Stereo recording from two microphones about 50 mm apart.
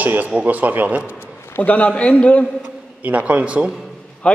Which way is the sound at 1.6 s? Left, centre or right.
Left.